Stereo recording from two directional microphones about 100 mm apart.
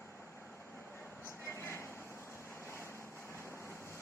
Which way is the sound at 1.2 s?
25° left (ahead or behind).